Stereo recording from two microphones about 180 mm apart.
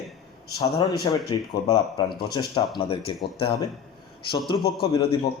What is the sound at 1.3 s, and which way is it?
Speech, 25° left (ahead or behind).